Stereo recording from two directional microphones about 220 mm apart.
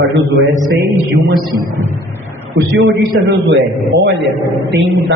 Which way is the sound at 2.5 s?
50° right (ahead or behind).